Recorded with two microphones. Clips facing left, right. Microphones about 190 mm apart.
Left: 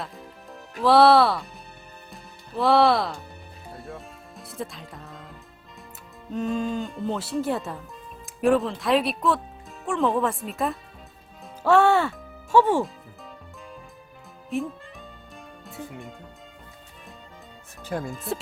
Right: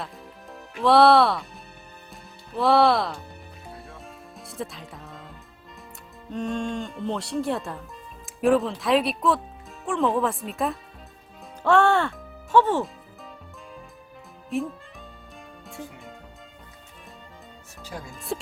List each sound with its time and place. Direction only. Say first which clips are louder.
0.0 s music: even; centre (ahead or behind)
0.8 s speech: even; centre (ahead or behind)
2.6 s speech: even; centre (ahead or behind)
3.7 s music: left 4 dB; centre (ahead or behind)
6.3 s speech: left 2 dB; 5° left (ahead or behind)
14.5 s speech: even; centre (ahead or behind)
15.6 s music: left 2 dB; centre (ahead or behind)
17.8 s speech: left 8 dB; 55° left (ahead or behind)
18.1 s speech: left 1 dB; centre (ahead or behind)